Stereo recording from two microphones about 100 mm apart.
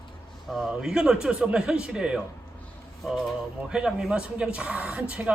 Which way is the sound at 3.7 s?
5° right (ahead or behind).